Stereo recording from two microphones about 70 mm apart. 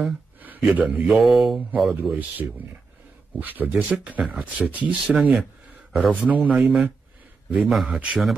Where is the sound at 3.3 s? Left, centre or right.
Right.